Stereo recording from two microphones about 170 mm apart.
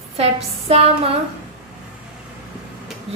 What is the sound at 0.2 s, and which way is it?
Speech, 35° right (ahead or behind).